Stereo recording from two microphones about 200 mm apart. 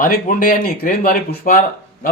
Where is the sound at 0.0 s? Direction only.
40° left (ahead or behind).